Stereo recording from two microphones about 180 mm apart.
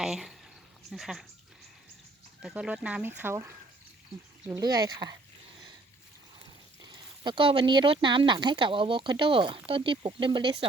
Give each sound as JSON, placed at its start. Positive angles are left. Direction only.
{"t": 0.0, "sound": "speech", "side_deg": 0}
{"t": 2.4, "sound": "speech", "side_deg": -5}
{"t": 6.9, "sound": "speech", "side_deg": -25}